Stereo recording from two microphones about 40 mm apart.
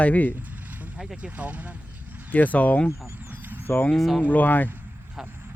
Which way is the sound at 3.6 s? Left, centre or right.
Left.